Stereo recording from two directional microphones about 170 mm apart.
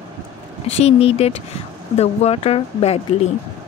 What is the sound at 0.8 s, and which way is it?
Speech, 35° left (ahead or behind).